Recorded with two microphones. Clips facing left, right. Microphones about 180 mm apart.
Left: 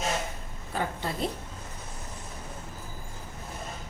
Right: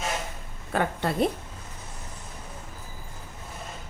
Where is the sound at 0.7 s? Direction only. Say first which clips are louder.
Right 5 dB; 65° right (ahead or behind).